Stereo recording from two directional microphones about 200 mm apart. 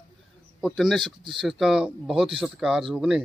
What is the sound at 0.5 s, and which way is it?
Speech, centre (ahead or behind).